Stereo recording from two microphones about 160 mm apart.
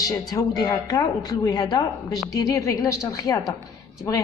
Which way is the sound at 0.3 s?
25° left (ahead or behind).